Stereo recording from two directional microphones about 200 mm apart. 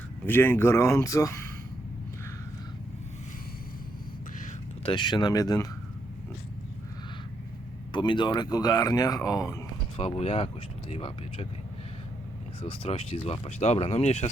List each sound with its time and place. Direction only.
0.3 s speech: 10° left (ahead or behind)
4.8 s speech: 25° left (ahead or behind)
7.9 s speech: 20° left (ahead or behind)
10.0 s speech: 30° left (ahead or behind)
12.6 s speech: 25° left (ahead or behind)